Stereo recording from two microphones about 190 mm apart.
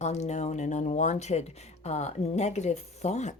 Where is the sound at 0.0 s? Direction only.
35° left (ahead or behind).